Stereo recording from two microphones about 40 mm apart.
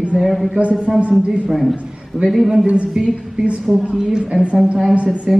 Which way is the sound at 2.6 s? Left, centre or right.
Right.